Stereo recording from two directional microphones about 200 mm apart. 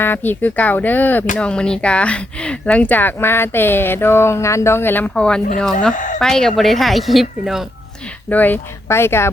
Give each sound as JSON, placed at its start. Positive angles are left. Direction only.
{"t": 0.0, "sound": "speech", "side_deg": 10}
{"t": 5.9, "sound": "speech", "side_deg": 40}
{"t": 6.1, "sound": "speech", "side_deg": 5}